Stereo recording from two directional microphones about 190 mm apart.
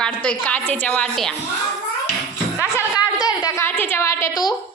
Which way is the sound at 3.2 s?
20° left (ahead or behind).